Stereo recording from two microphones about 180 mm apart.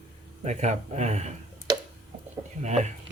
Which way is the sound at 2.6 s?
40° right (ahead or behind).